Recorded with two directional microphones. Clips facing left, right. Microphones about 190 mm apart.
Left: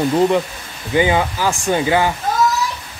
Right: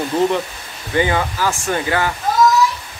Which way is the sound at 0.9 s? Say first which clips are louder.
Left 2 dB; 15° left (ahead or behind).